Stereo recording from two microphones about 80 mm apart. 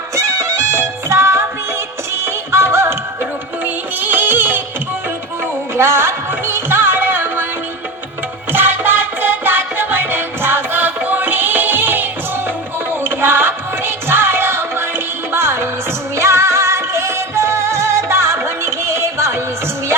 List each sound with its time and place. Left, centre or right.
0.2 s music: right
4.0 s music: right
5.7 s music: right
8.5 s music: right